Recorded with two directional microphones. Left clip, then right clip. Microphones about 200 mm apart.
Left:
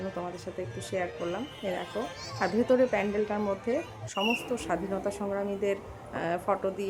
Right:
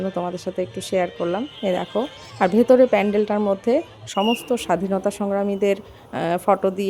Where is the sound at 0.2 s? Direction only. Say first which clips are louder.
Right 11 dB; 45° right (ahead or behind).